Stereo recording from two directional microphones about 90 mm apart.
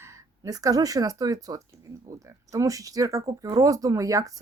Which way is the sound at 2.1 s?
35° right (ahead or behind).